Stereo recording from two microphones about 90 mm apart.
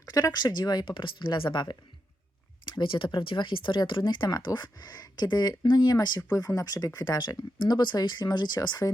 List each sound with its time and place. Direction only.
0.0 s speech: 40° left (ahead or behind); by 4.3 s 65° left (ahead or behind)
4.3 s speech: 50° left (ahead or behind)
6.3 s speech: 40° left (ahead or behind); by 8.9 s 55° left (ahead or behind)